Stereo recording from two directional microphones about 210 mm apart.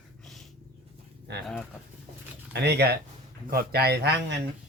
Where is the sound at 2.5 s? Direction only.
50° right (ahead or behind).